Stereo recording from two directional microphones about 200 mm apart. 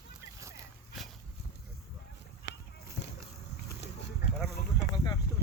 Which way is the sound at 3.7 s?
55° left (ahead or behind).